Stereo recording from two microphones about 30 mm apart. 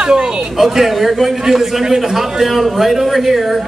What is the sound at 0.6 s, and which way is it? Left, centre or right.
A man's voice, centre.